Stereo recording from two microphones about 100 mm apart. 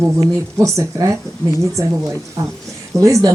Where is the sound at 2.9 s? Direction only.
35° right (ahead or behind).